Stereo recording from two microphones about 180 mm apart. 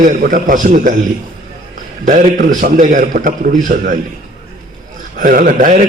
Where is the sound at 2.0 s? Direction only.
45° right (ahead or behind).